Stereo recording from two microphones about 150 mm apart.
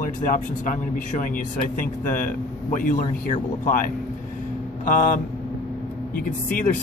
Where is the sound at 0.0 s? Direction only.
60° left (ahead or behind).